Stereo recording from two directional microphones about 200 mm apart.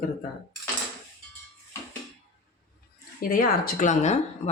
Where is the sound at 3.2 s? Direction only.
45° left (ahead or behind).